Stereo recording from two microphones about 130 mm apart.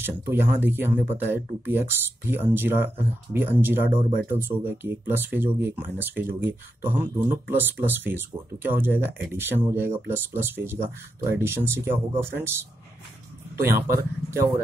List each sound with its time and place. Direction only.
0.0 s speech: 15° right (ahead or behind)
13.6 s speech: 20° right (ahead or behind)